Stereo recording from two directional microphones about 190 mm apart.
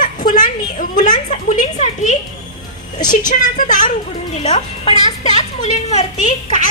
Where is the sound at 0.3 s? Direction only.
45° left (ahead or behind).